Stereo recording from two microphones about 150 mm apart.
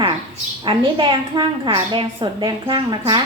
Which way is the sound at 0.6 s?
35° right (ahead or behind).